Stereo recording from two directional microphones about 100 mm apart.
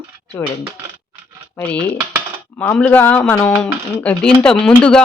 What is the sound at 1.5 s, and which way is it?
Speech, 10° left (ahead or behind).